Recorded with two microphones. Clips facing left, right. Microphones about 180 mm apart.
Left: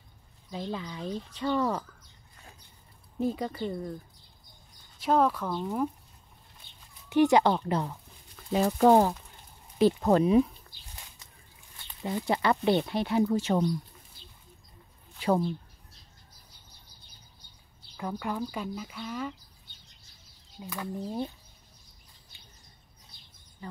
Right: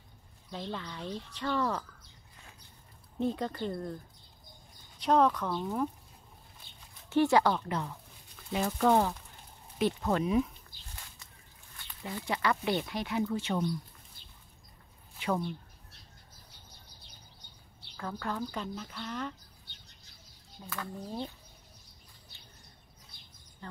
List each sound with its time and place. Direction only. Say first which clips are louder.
0.5 s speech: left 4 dB; 10° left (ahead or behind)
3.2 s speech: left 2 dB; 5° left (ahead or behind)
7.1 s speech: left 3 dB; 15° left (ahead or behind); by 10.5 s 30° left (ahead or behind)
12.3 s speech: left 5 dB; 30° left (ahead or behind)
15.1 s speech: left 6 dB; 35° left (ahead or behind)
17.9 s speech: left 3 dB; 15° left (ahead or behind)
20.7 s speech: left 5 dB; 15° left (ahead or behind)
23.6 s speech: left 4 dB; 10° left (ahead or behind)